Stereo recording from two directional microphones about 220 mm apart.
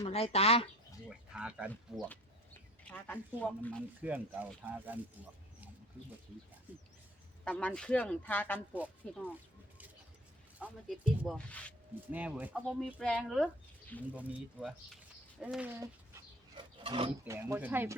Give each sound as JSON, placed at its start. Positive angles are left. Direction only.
{"t": 0.0, "sound": "speech", "side_deg": 25}
{"t": 1.0, "sound": "speech", "side_deg": -5}
{"t": 2.0, "sound": "speech", "side_deg": 10}
{"t": 4.0, "sound": "speech", "side_deg": -5}
{"t": 7.4, "sound": "speech", "side_deg": 5}
{"t": 10.6, "sound": "speech", "side_deg": -5}
{"t": 12.1, "sound": "speech", "side_deg": -5}
{"t": 14.1, "sound": "speech", "side_deg": -5}
{"t": 16.6, "sound": "filing", "side_deg": -25}
{"t": 17.2, "sound": "speech", "side_deg": -10}